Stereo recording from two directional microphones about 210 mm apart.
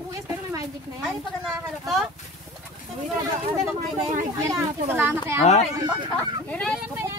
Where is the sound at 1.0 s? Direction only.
Centre (ahead or behind).